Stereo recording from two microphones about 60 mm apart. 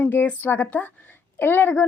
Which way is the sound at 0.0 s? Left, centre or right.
Left.